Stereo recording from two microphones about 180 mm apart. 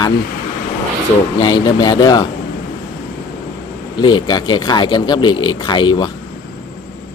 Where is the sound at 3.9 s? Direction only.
25° left (ahead or behind).